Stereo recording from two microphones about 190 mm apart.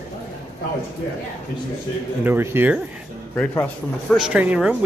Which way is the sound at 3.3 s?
10° left (ahead or behind).